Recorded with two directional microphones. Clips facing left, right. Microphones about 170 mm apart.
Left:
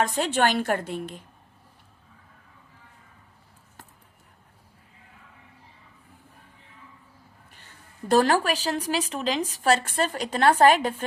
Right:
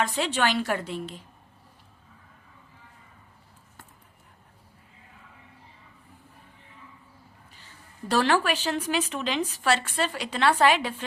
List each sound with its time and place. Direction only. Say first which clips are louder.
0.0 s a woman's voice: left 3 dB; 45° left (ahead or behind)
8.0 s speech: left 3 dB; 45° left (ahead or behind)